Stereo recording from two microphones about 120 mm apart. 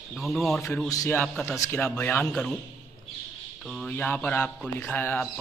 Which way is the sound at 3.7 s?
5° left (ahead or behind).